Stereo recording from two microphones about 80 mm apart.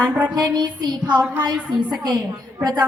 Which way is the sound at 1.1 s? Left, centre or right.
Centre.